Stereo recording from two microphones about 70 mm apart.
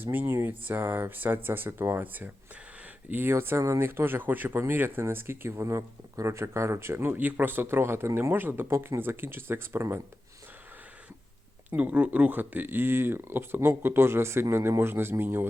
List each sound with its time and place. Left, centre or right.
0.0 s speech: right
7.1 s speech: right
11.8 s speech: centre